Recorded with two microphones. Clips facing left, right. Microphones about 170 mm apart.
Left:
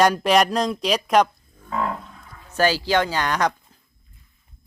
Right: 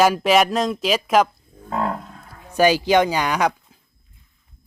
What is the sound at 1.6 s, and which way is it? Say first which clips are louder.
Livestock: right 2 dB; 40° right (ahead or behind).